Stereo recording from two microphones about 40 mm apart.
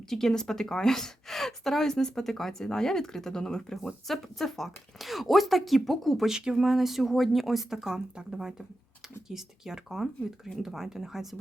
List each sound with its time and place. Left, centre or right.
0.1 s a woman's voice: centre
6.2 s speech: centre
6.6 s speech: centre